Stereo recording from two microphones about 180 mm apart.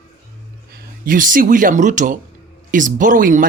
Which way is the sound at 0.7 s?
50° right (ahead or behind).